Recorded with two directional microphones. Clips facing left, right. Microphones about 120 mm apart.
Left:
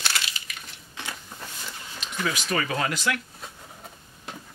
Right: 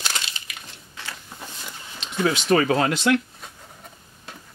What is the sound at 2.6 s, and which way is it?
Speech, 40° right (ahead or behind).